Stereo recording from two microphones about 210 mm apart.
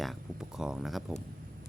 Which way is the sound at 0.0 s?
Centre (ahead or behind).